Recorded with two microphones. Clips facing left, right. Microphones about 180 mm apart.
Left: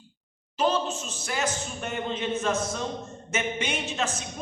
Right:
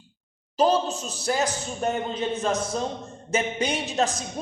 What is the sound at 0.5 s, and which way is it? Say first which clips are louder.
Speech: right 4 dB; 35° right (ahead or behind).